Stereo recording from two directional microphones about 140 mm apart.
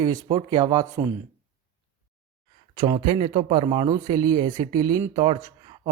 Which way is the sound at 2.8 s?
30° right (ahead or behind).